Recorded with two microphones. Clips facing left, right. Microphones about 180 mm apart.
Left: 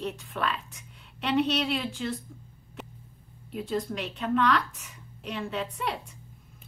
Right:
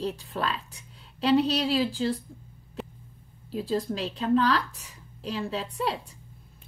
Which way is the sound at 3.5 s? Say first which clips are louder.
Right 2 dB; 30° right (ahead or behind).